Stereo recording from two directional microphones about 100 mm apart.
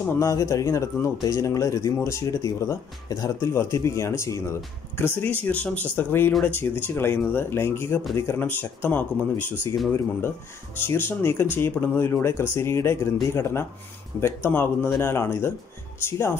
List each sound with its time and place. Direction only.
0.2 s speech: 35° left (ahead or behind)